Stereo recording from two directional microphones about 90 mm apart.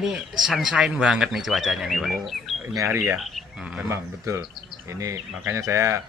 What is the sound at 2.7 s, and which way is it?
Speech, 30° right (ahead or behind).